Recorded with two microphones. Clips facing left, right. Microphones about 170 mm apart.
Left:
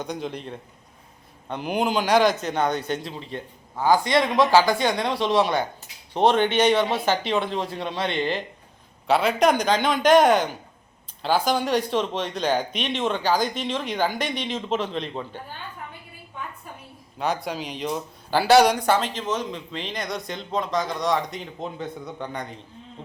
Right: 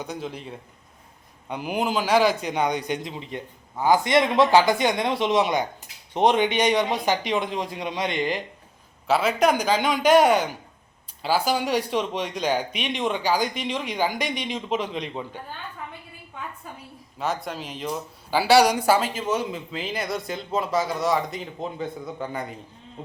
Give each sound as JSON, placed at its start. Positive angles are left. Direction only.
{"t": 0.0, "sound": "a man's voice", "side_deg": -5}
{"t": 17.2, "sound": "speech", "side_deg": 0}